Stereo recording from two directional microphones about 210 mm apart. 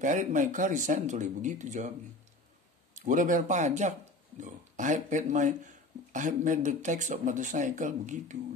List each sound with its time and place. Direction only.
0.0 s speech: 35° right (ahead or behind)
2.9 s speech: 35° right (ahead or behind)